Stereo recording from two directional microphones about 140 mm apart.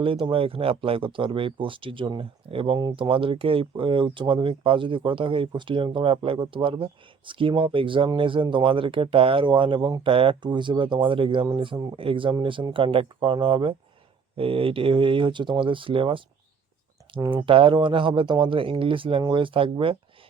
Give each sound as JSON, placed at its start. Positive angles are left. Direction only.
{"t": 0.0, "sound": "speech", "side_deg": -40}
{"t": 17.2, "sound": "speech", "side_deg": -40}